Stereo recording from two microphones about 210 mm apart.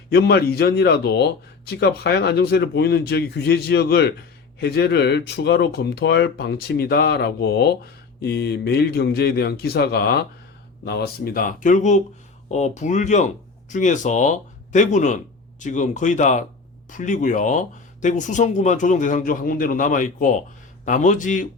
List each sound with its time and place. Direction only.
0.1 s speech: 50° left (ahead or behind)